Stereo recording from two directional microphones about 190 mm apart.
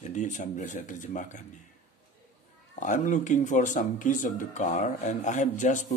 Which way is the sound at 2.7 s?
40° left (ahead or behind).